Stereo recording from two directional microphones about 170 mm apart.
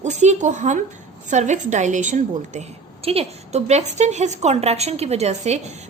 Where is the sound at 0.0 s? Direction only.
45° right (ahead or behind).